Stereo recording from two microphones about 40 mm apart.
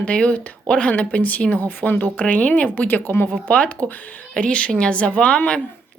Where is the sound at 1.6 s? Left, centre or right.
Left.